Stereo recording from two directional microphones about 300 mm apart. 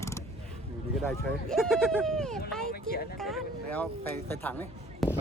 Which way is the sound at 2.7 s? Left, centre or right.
Left.